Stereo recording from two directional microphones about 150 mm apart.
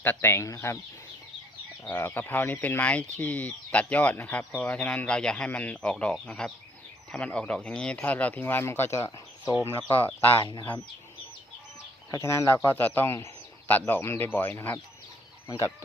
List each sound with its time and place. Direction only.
0.0 s speech: 15° left (ahead or behind)
1.9 s speech: 15° left (ahead or behind)
9.9 s speech: 10° left (ahead or behind)
12.1 s speech: 20° left (ahead or behind)